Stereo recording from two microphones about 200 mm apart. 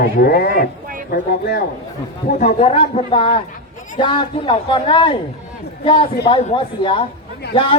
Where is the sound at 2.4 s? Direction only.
35° left (ahead or behind).